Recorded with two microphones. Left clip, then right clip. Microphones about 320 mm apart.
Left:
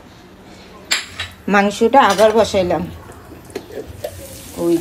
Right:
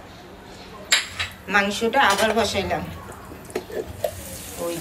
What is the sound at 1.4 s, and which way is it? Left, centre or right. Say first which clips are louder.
Speech: left 7 dB; centre.